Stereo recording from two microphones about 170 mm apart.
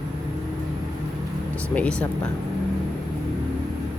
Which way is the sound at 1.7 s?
10° left (ahead or behind).